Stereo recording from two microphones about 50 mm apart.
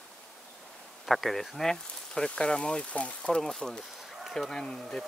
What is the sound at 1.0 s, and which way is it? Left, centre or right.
Speech, centre.